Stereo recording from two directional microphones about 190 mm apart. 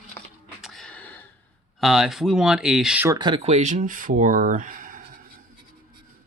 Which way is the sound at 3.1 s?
20° right (ahead or behind).